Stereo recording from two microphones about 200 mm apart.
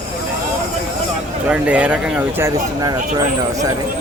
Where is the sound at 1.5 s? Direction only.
5° right (ahead or behind).